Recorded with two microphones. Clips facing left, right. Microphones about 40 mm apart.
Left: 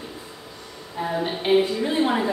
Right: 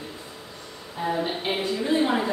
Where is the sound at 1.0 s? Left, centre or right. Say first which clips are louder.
Left 1 dB; centre.